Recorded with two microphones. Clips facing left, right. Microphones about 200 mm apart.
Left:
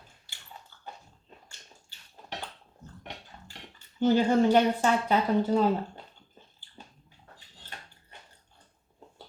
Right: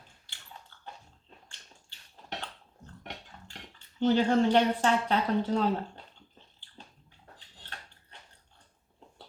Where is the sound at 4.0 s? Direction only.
10° left (ahead or behind).